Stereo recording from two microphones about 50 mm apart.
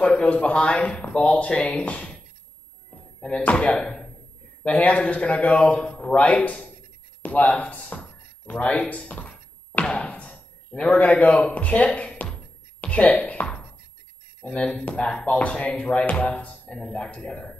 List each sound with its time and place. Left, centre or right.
0.0 s speech: left
8.7 s thunk: left
10.8 s a man's voice: left
12.1 s a sound: centre
12.8 s a woman's voice: left